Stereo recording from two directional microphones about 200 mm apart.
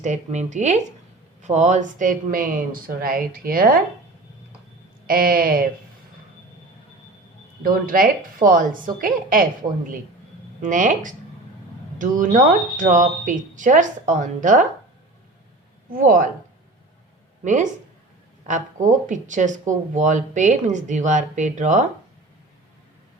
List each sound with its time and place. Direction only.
0.0 s a woman's voice: 35° right (ahead or behind)
5.0 s a woman's voice: 45° right (ahead or behind)
7.6 s a woman's voice: 45° right (ahead or behind)
10.6 s speech: 40° right (ahead or behind)
15.9 s a woman's voice: 45° right (ahead or behind)
17.4 s speech: 40° right (ahead or behind)